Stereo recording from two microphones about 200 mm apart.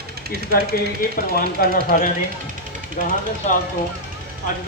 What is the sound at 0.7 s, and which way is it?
Speech, 50° left (ahead or behind).